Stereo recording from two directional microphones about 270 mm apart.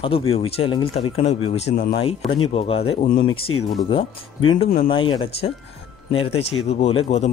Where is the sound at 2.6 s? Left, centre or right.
Left.